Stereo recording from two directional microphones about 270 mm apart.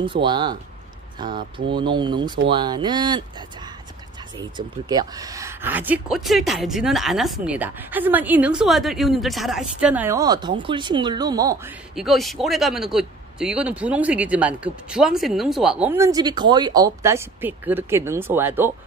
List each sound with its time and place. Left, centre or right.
0.0 s speech: centre
4.6 s speech: centre
11.9 s speech: centre